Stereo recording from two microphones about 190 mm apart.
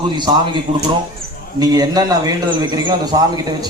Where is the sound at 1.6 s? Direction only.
20° right (ahead or behind).